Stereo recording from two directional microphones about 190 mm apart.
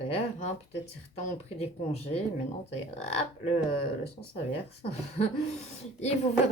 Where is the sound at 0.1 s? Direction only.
35° left (ahead or behind).